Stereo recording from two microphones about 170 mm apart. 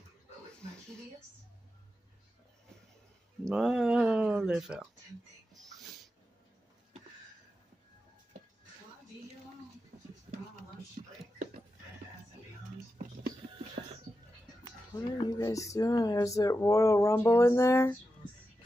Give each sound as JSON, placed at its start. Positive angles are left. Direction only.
{"t": 3.4, "sound": "speech", "side_deg": -5}
{"t": 11.0, "sound": "a sound", "side_deg": -55}
{"t": 15.0, "sound": "speech", "side_deg": 25}